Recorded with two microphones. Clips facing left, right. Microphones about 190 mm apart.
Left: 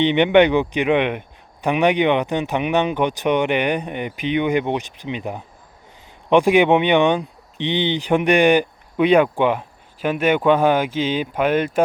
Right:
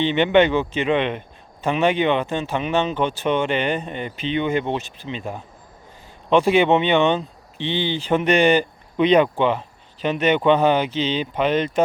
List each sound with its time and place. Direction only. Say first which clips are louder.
0.0 s speech: left 2 dB; 15° left (ahead or behind)